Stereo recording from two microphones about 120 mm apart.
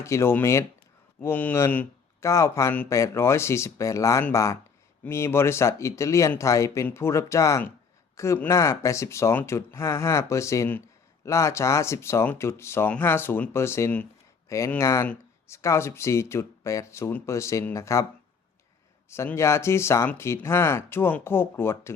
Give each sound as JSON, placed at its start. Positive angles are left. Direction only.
{"t": 0.0, "sound": "speech", "side_deg": 25}
{"t": 19.1, "sound": "speech", "side_deg": 25}